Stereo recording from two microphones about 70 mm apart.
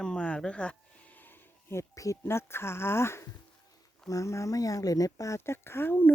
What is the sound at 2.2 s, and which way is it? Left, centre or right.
Speech, left.